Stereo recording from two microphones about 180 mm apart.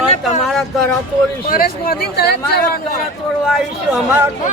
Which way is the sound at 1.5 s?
55° left (ahead or behind).